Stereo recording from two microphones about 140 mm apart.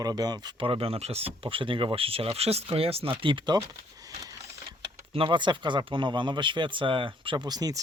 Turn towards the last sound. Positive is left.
turn(degrees=-30)  # may be behind; listen again after turning